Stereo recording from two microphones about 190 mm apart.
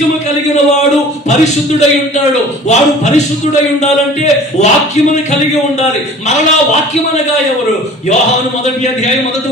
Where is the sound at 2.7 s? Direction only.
35° left (ahead or behind).